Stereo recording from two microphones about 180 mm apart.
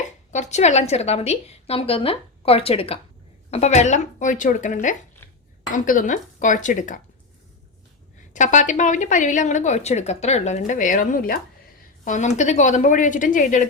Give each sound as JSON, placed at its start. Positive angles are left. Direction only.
{"t": 0.3, "sound": "a woman's voice", "side_deg": 40}
{"t": 8.3, "sound": "a woman's voice", "side_deg": 45}